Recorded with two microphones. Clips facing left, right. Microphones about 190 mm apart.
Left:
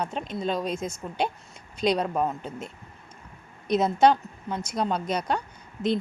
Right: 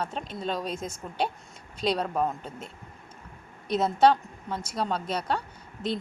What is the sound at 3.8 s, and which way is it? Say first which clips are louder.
Speech: left 1 dB; 10° left (ahead or behind).